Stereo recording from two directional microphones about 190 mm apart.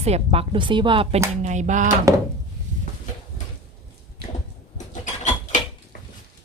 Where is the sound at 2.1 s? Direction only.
15° right (ahead or behind).